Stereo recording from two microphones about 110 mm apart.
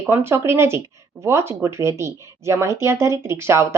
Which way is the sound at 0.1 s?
20° right (ahead or behind).